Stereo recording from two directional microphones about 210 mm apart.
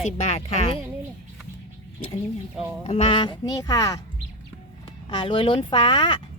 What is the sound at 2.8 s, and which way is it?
Speech, 25° left (ahead or behind).